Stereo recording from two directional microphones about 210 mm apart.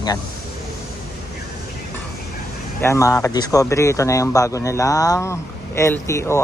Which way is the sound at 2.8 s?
15° left (ahead or behind).